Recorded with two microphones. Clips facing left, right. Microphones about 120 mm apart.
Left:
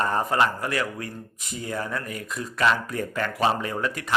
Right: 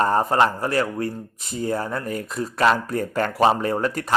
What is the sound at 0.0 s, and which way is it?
Speech, 35° right (ahead or behind).